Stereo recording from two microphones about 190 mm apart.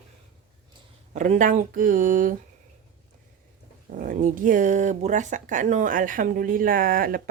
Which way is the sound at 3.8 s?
45° right (ahead or behind).